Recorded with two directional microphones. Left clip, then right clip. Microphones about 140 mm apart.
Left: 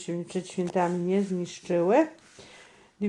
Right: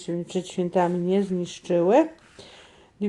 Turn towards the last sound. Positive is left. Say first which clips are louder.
# right 3 dB
turn(degrees=-30)  # may be behind; listen again after turning